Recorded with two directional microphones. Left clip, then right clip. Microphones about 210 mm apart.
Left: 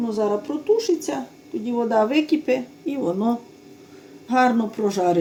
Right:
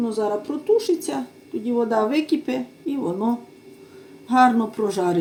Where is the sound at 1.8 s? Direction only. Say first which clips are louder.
Left 1 dB; 15° left (ahead or behind).